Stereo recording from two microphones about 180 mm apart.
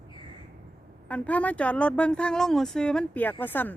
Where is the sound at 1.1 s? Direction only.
5° left (ahead or behind).